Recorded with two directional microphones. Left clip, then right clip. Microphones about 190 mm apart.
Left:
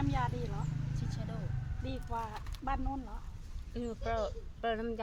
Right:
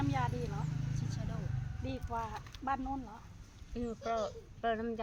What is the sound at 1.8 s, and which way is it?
Speech, 15° right (ahead or behind).